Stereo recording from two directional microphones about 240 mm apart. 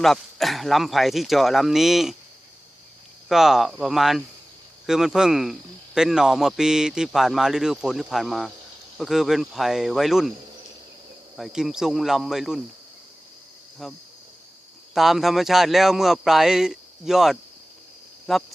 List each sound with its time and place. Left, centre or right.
0.0 s a man's voice: centre
3.2 s a man's voice: centre
11.3 s a man's voice: centre
13.8 s a man's voice: centre